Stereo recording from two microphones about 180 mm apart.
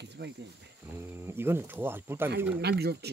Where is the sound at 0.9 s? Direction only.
15° right (ahead or behind).